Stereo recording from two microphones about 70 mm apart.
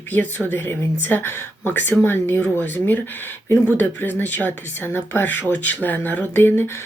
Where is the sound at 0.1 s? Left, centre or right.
Left.